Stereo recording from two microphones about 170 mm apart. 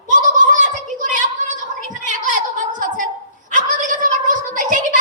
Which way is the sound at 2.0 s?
50° right (ahead or behind).